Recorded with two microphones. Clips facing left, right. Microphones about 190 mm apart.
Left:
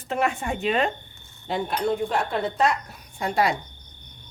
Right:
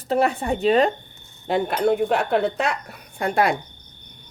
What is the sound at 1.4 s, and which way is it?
Speech, 60° right (ahead or behind).